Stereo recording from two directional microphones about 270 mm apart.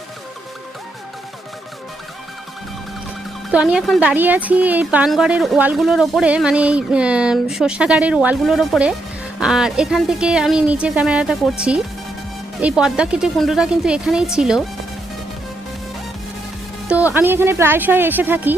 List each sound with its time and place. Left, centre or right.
3.5 s speech: centre
17.2 s a woman's voice: centre